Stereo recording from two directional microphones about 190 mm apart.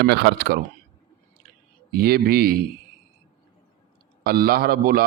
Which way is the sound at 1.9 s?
50° right (ahead or behind).